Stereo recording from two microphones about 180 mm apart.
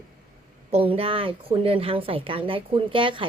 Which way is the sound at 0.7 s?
30° right (ahead or behind).